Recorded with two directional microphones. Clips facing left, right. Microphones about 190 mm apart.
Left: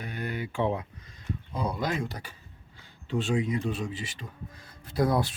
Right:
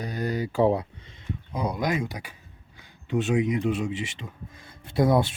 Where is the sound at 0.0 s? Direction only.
40° right (ahead or behind).